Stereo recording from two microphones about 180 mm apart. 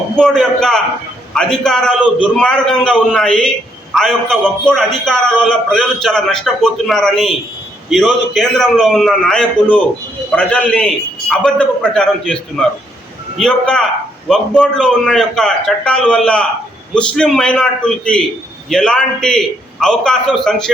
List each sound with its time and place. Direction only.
0.2 s a man's voice: 5° left (ahead or behind)